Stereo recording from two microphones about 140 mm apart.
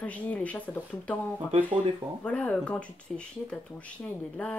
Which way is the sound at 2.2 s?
10° left (ahead or behind).